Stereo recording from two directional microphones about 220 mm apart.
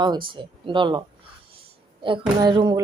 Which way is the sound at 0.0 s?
20° right (ahead or behind).